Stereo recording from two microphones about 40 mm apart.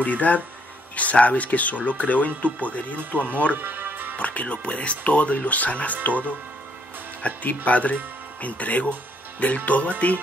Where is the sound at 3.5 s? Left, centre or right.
Right.